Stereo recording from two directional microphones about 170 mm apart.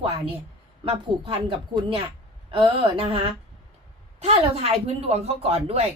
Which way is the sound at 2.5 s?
30° right (ahead or behind).